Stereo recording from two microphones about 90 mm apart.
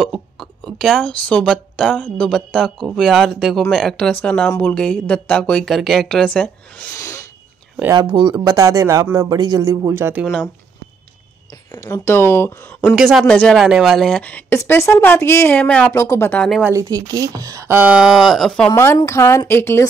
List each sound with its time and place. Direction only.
0.0 s a sound: 5° left (ahead or behind)
2.0 s speech: 15° left (ahead or behind)
6.9 s sneeze: 35° left (ahead or behind)
7.9 s speech: 55° right (ahead or behind); by 10.1 s 30° right (ahead or behind)
11.8 s a woman's voice: 30° left (ahead or behind)
12.9 s speech: centre (ahead or behind)
13.6 s speech: 5° right (ahead or behind)
14.5 s a woman's voice: 30° left (ahead or behind)
15.5 s speech: 15° left (ahead or behind)
15.9 s speech: 30° left (ahead or behind)
16.7 s speech: 40° right (ahead or behind)
17.7 s speech: 10° right (ahead or behind)
19.0 s a woman's voice: 30° left (ahead or behind)